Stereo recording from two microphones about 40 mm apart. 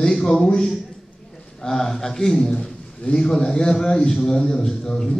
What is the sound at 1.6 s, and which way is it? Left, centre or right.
A man's voice, centre.